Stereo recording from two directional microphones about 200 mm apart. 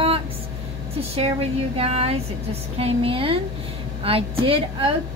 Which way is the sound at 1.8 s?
30° right (ahead or behind).